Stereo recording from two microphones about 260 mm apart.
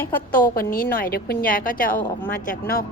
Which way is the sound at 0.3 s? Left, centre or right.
Left.